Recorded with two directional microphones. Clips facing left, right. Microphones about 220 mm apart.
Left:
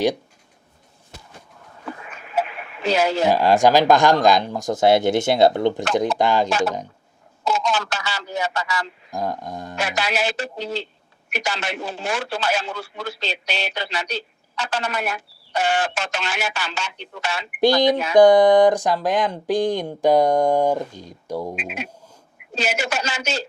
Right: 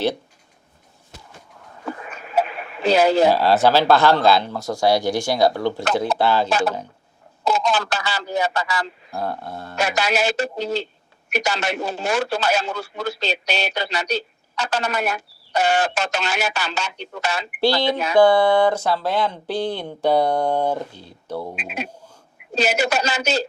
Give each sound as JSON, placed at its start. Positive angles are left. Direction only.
{"t": 2.0, "sound": "a sound", "side_deg": -40}
{"t": 3.3, "sound": "speech", "side_deg": 15}
{"t": 6.5, "sound": "speech", "side_deg": -35}
{"t": 9.1, "sound": "speech", "side_deg": 15}
{"t": 9.7, "sound": "speech", "side_deg": -45}
{"t": 17.6, "sound": "speech", "side_deg": 15}
{"t": 21.5, "sound": "speech", "side_deg": -35}